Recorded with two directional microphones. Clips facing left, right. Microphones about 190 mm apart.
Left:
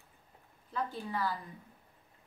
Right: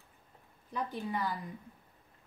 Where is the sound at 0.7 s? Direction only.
20° right (ahead or behind).